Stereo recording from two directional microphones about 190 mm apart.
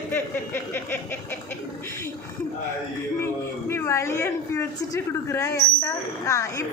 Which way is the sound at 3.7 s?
15° left (ahead or behind).